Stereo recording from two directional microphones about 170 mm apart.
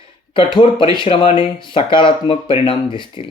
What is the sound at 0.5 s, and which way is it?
Speech, 30° left (ahead or behind).